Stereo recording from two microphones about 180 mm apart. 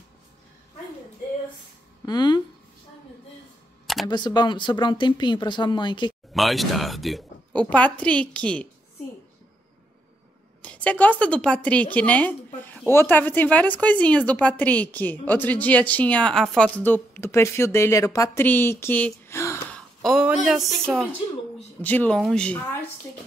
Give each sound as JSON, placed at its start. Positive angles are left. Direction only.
{"t": 2.0, "sound": "speech", "side_deg": 25}
{"t": 3.8, "sound": "camera", "side_deg": 0}
{"t": 4.1, "sound": "speech", "side_deg": 25}
{"t": 6.3, "sound": "speech", "side_deg": 0}
{"t": 10.6, "sound": "speech", "side_deg": 5}
{"t": 20.0, "sound": "a woman's voice", "side_deg": 0}